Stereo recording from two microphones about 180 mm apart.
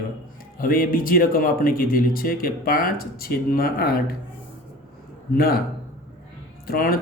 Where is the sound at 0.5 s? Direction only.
50° left (ahead or behind).